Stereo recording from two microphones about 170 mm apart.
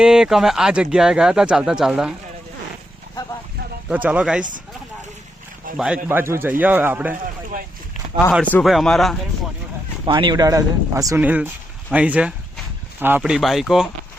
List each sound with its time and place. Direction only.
0.0 s speech: 5° right (ahead or behind)
3.8 s speech: 10° right (ahead or behind)
5.7 s speech: 5° right (ahead or behind)
6.1 s speech: 15° right (ahead or behind)
8.6 s speech: centre (ahead or behind)
10.1 s speech: 25° right (ahead or behind); by 13.9 s centre (ahead or behind)